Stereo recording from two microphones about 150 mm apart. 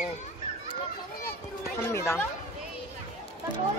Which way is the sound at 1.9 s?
15° left (ahead or behind).